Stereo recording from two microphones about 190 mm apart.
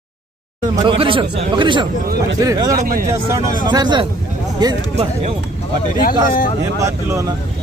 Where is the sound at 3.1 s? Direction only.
15° right (ahead or behind).